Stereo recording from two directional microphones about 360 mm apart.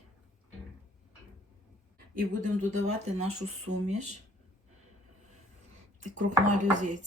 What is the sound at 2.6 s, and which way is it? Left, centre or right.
Speech, centre.